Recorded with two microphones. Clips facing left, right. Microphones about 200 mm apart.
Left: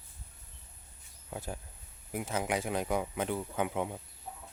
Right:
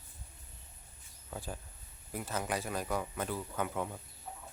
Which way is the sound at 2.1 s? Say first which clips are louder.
Left 3 dB; 15° left (ahead or behind).